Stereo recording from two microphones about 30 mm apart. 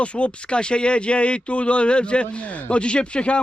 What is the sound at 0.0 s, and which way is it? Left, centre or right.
Speech, left.